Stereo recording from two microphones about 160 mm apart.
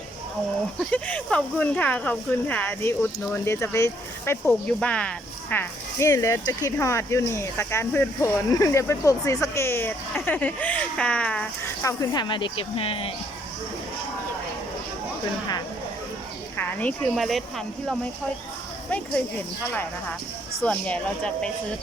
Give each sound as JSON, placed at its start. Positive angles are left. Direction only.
{"t": 0.9, "sound": "speech", "side_deg": 10}
{"t": 11.9, "sound": "speech", "side_deg": 25}
{"t": 16.6, "sound": "speech", "side_deg": 10}
{"t": 20.7, "sound": "speech", "side_deg": 5}